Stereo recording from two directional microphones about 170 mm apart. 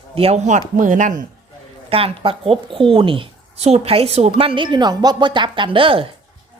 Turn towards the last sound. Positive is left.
turn(degrees=-30)  # may be behind; listen again after turning